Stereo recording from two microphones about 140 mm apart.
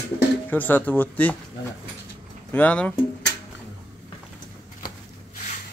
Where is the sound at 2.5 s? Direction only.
10° left (ahead or behind).